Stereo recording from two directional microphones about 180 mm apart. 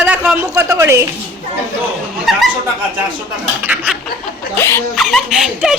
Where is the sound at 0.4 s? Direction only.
15° right (ahead or behind).